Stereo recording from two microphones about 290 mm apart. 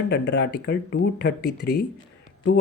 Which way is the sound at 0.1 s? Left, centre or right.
Left.